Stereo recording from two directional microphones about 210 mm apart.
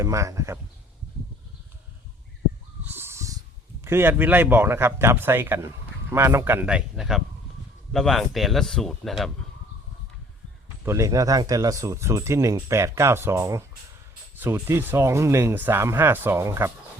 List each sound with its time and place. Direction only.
0.0 s speech: 15° right (ahead or behind)
2.8 s a sound: 10° right (ahead or behind)
3.8 s speech: 10° right (ahead or behind)
10.8 s speech: 15° right (ahead or behind)